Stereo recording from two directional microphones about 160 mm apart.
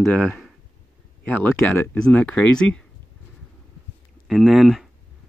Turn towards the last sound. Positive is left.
turn(degrees=0)  # may be behind; listen again after turning